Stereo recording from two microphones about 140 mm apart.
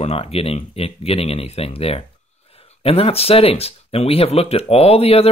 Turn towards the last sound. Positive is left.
turn(degrees=45)  # may be behind; listen again after turning